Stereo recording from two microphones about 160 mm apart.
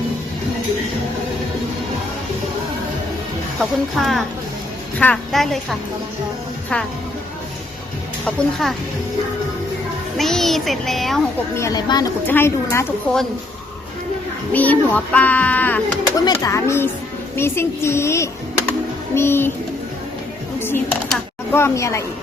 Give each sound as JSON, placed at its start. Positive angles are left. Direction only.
{"t": 3.6, "sound": "a child's voice", "side_deg": 0}
{"t": 8.2, "sound": "a child's voice", "side_deg": 5}
{"t": 10.2, "sound": "a child's voice", "side_deg": 0}
{"t": 11.5, "sound": "a child's voice", "side_deg": 20}
{"t": 14.5, "sound": "a child's voice", "side_deg": 10}
{"t": 16.1, "sound": "a child's voice", "side_deg": 25}
{"t": 20.6, "sound": "a child's voice", "side_deg": 15}